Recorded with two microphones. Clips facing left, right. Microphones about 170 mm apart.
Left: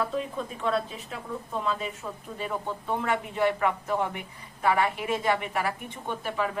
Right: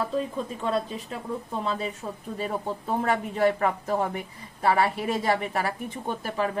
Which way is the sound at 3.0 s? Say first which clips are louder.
Right 3 dB; 40° right (ahead or behind).